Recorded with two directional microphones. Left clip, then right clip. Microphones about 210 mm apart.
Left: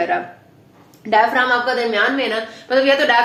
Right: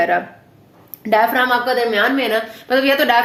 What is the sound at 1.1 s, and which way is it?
A woman's voice, 45° right (ahead or behind).